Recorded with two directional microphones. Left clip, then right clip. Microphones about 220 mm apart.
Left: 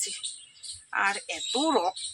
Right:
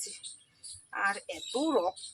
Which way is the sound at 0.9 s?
5° left (ahead or behind).